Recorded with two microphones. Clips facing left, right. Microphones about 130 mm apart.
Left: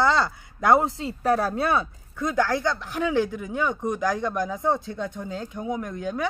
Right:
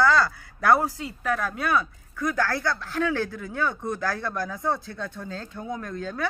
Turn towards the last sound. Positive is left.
turn(degrees=15)  # may be behind; listen again after turning